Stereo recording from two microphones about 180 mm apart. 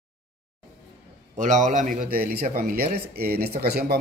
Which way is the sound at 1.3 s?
45° right (ahead or behind).